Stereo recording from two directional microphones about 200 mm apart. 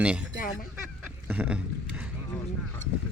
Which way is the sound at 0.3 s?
45° left (ahead or behind).